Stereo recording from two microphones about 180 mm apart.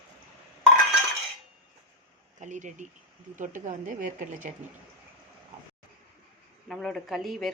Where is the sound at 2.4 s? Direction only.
45° right (ahead or behind).